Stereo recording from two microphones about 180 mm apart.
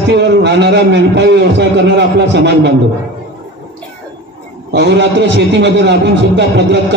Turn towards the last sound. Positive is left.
turn(degrees=-75)  # may be behind; listen again after turning